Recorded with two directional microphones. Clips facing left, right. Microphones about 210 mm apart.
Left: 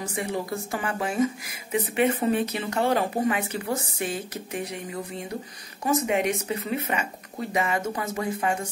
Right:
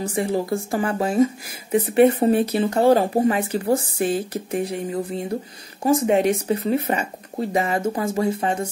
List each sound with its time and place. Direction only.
0.1 s speech: 30° right (ahead or behind)